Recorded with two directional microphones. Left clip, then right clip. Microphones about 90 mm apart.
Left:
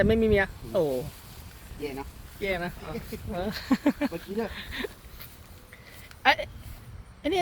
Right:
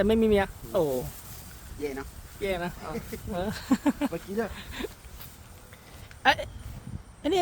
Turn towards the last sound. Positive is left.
turn(degrees=-30)  # may be behind; listen again after turning